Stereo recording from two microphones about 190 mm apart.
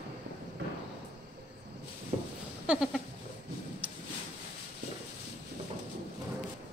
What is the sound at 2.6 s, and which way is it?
Goat, 5° right (ahead or behind).